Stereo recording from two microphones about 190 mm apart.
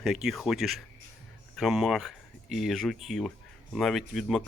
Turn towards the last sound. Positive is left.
turn(degrees=0)  # may be behind; listen again after turning